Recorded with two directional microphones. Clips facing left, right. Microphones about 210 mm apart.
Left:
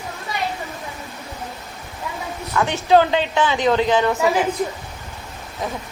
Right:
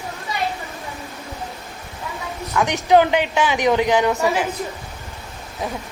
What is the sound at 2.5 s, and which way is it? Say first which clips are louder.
Speech: even; 15° right (ahead or behind).